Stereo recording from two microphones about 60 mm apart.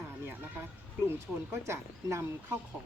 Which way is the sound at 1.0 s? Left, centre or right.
Right.